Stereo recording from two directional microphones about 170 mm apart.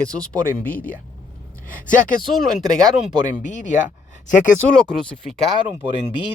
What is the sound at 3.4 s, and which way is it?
Speech, 50° left (ahead or behind).